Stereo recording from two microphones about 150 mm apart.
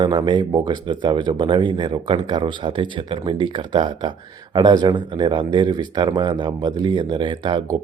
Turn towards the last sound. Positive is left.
turn(degrees=-30)  # may be behind; listen again after turning